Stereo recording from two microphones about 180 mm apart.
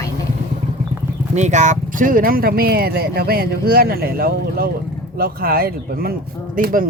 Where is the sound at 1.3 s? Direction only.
40° right (ahead or behind).